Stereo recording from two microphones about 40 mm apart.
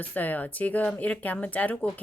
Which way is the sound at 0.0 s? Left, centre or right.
Left.